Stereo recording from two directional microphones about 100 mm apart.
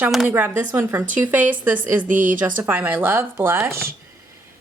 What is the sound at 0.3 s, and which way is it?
Speech, 20° right (ahead or behind).